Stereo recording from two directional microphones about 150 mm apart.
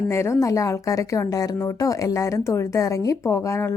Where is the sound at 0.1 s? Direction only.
20° left (ahead or behind).